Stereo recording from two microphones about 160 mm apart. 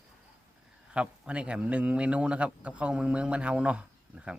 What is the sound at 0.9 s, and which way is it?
A man's voice, 5° right (ahead or behind).